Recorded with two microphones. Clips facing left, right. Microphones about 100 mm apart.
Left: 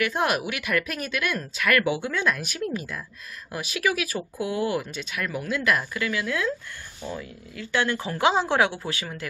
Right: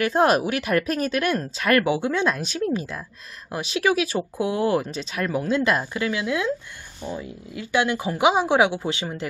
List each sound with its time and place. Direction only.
0.0 s speech: 35° right (ahead or behind)